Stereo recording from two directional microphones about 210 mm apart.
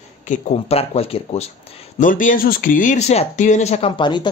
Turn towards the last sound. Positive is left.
turn(degrees=20)  # may be behind; listen again after turning